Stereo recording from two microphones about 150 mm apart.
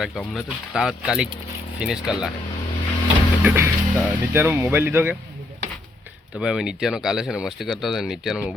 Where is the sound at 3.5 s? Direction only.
15° right (ahead or behind).